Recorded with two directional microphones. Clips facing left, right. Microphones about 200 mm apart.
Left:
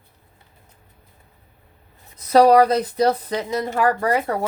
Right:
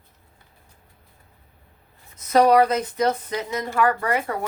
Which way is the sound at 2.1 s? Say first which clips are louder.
Left 3 dB; 35° left (ahead or behind).